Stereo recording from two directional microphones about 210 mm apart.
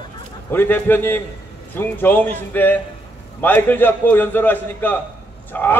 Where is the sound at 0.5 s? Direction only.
10° left (ahead or behind).